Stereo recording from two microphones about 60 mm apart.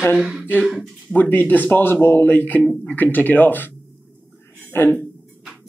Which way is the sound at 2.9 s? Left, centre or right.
Left.